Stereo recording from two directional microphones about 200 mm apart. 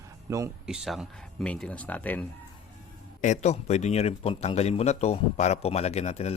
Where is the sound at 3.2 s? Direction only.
35° left (ahead or behind).